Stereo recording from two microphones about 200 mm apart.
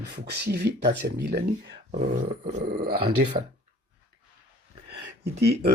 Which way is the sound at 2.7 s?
55° right (ahead or behind).